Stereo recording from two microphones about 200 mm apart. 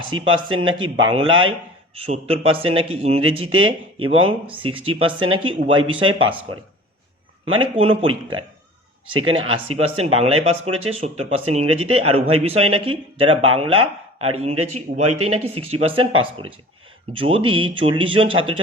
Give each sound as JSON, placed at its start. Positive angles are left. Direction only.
{"t": 0.0, "sound": "speech", "side_deg": -25}
{"t": 7.8, "sound": "speech", "side_deg": -25}
{"t": 9.7, "sound": "speech", "side_deg": -30}